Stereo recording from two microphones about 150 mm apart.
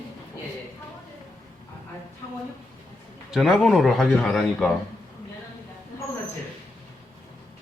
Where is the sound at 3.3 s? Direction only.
Centre (ahead or behind).